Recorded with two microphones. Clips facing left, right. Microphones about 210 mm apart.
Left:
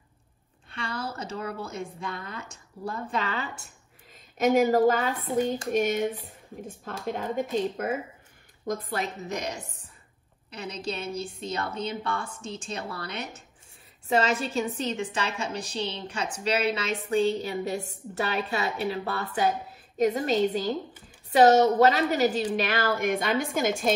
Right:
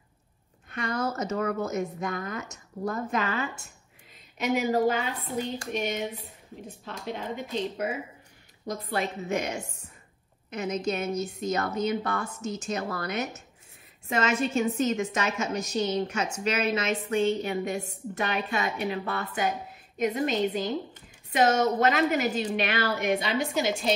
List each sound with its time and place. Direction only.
0.7 s a sound: 30° left (ahead or behind)
1.7 s a woman's voice: 30° left (ahead or behind)
4.4 s a woman's voice: 45° left (ahead or behind)
9.3 s a woman's voice: 35° left (ahead or behind)